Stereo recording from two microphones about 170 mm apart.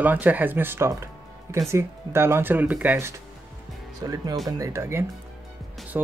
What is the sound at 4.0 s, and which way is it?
Speech, 25° right (ahead or behind).